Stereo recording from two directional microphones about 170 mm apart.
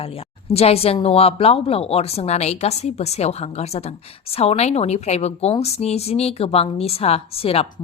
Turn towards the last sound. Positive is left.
turn(degrees=35)  # may be behind; listen again after turning